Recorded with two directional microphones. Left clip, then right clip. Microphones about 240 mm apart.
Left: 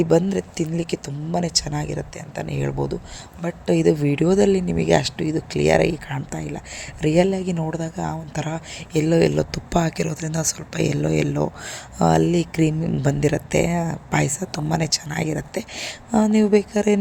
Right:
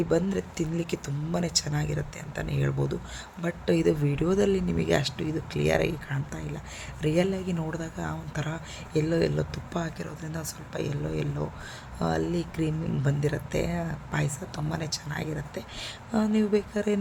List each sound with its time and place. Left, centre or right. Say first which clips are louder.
0.0 s speech: left 8 dB; left